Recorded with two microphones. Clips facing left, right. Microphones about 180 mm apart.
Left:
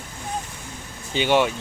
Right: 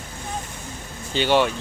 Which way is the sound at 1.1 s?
10° left (ahead or behind).